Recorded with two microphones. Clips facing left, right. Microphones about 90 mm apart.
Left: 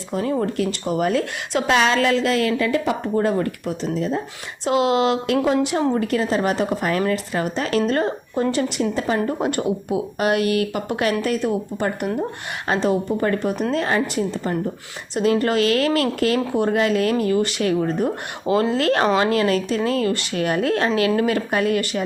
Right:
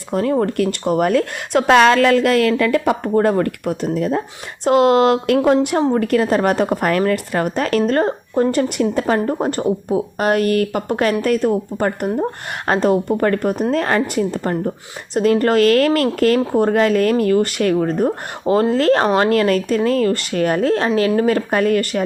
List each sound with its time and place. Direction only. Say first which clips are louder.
0.1 s a woman's voice: right 5 dB; 60° right (ahead or behind); by 22.0 s 45° right (ahead or behind)